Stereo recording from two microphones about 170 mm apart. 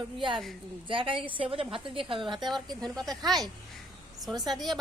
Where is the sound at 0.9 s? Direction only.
30° right (ahead or behind).